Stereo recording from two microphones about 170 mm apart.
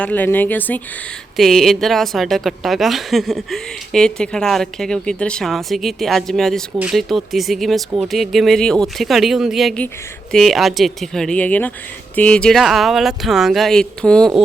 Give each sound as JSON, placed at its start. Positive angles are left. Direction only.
{"t": 0.0, "sound": "a woman's voice", "side_deg": 10}